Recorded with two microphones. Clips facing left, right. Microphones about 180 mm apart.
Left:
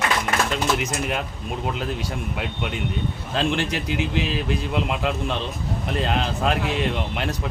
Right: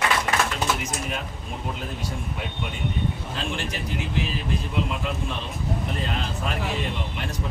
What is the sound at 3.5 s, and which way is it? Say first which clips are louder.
Speech: left 5 dB; 75° left (ahead or behind).